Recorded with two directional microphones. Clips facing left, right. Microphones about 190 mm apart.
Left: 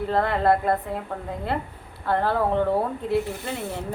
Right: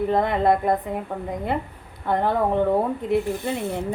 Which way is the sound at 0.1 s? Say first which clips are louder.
Left 1 dB; 15° right (ahead or behind).